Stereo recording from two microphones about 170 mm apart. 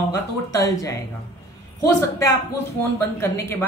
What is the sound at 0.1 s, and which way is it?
Speech, 20° left (ahead or behind).